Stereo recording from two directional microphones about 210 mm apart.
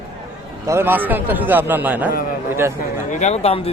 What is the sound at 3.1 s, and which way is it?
Speech, 30° left (ahead or behind).